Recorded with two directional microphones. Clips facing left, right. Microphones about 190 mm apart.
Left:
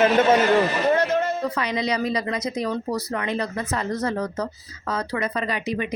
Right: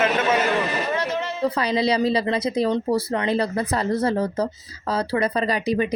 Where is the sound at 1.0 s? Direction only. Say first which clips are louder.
Left 4 dB; 50° left (ahead or behind).